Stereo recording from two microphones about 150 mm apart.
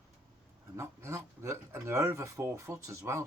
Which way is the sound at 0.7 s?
20° right (ahead or behind).